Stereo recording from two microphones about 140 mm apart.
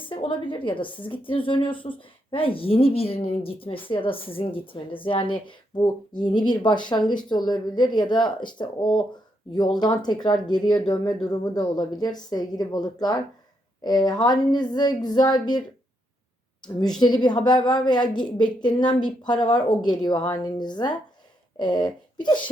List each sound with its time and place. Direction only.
0.0 s speech: 35° left (ahead or behind)
9.7 s a woman's voice: 30° left (ahead or behind)
17.0 s speech: 30° left (ahead or behind)